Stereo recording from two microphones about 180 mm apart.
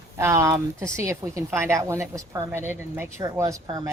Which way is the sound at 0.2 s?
15° right (ahead or behind).